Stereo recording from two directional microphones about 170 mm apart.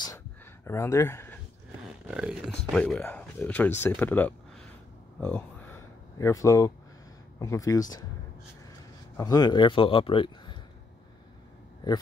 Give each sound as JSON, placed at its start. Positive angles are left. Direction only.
{"t": 0.7, "sound": "speech", "side_deg": 15}
{"t": 1.9, "sound": "speech", "side_deg": -5}
{"t": 2.7, "sound": "speech", "side_deg": 5}
{"t": 5.2, "sound": "a sound", "side_deg": 10}
{"t": 7.3, "sound": "speech", "side_deg": 20}